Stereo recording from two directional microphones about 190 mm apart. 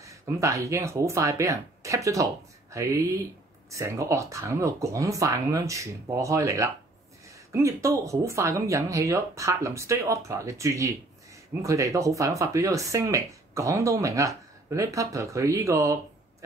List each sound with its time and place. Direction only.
0.0 s speech: 15° right (ahead or behind)